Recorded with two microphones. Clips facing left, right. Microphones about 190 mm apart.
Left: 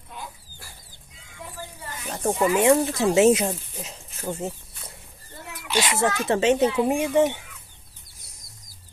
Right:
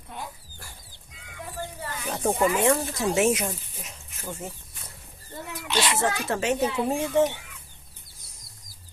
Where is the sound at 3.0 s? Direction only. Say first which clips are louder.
Left 5 dB; 30° left (ahead or behind).